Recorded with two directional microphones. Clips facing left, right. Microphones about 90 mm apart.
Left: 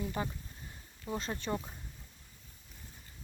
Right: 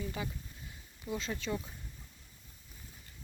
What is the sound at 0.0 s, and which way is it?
Speech, 50° left (ahead or behind).